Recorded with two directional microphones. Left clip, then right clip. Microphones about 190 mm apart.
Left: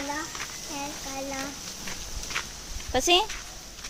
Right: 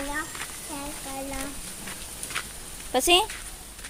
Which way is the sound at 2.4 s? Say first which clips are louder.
Even; 5° left (ahead or behind).